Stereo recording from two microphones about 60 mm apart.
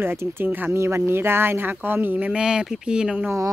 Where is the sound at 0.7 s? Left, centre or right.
Right.